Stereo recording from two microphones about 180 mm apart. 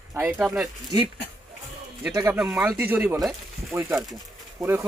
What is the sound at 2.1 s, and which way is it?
Speech, 15° right (ahead or behind).